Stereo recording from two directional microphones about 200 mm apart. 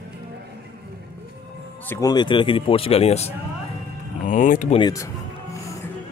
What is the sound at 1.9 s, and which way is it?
Speech, 20° left (ahead or behind).